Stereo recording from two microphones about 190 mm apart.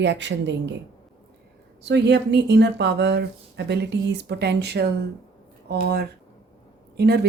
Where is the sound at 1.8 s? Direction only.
65° right (ahead or behind).